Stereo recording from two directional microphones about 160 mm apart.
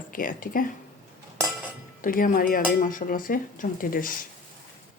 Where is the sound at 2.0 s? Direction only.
60° left (ahead or behind).